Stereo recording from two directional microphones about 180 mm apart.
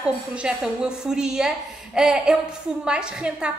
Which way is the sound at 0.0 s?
5° right (ahead or behind).